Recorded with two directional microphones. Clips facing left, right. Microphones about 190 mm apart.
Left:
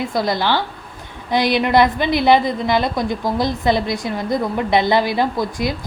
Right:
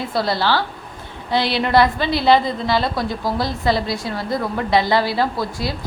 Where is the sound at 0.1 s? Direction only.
15° left (ahead or behind).